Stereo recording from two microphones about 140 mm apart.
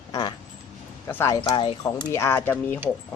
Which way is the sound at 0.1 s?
30° left (ahead or behind).